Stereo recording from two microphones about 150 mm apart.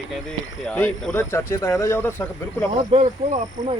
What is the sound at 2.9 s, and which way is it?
Speech, 45° right (ahead or behind).